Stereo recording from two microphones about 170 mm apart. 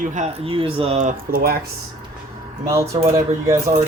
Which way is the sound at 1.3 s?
65° right (ahead or behind).